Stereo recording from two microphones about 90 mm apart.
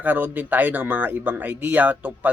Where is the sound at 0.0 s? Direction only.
15° right (ahead or behind).